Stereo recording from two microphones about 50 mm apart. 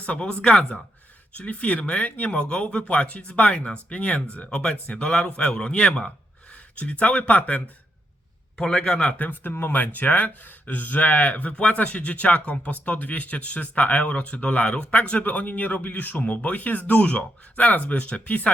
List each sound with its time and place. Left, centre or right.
0.0 s speech: left
8.5 s speech: centre